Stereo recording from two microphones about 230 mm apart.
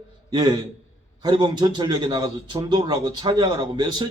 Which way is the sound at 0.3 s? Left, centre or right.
Centre.